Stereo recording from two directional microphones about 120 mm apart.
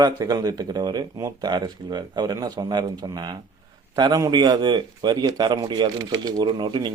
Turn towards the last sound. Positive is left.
turn(degrees=-40)  # may be behind; listen again after turning